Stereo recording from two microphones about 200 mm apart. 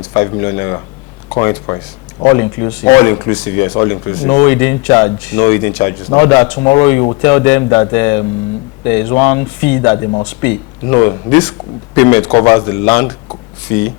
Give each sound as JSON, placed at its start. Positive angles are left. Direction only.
{"t": 0.1, "sound": "speech", "side_deg": 15}